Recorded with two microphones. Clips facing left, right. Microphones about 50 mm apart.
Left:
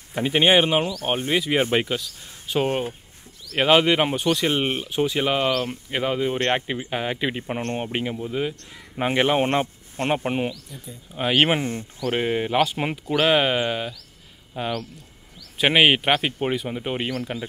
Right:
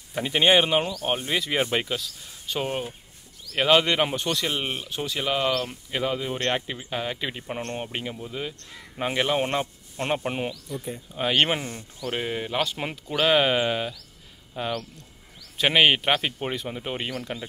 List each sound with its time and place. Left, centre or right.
0.1 s speech: centre
2.6 s speech: left
3.5 s speech: centre
4.5 s speech: left
4.8 s speech: centre
11.5 s speech: left; by 17.5 s centre